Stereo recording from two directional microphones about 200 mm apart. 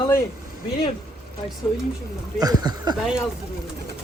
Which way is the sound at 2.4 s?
20° right (ahead or behind).